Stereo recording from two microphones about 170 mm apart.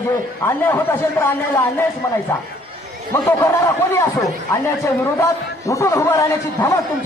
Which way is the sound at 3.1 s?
10° left (ahead or behind).